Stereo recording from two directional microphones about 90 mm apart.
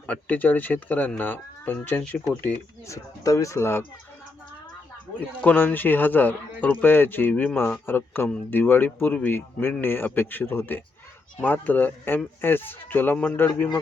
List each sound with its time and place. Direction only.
0.1 s speech: 15° left (ahead or behind)
2.8 s speech: 35° left (ahead or behind)
5.4 s speech: 20° left (ahead or behind)